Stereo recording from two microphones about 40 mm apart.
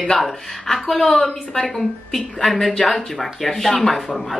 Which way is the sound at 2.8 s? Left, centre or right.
Centre.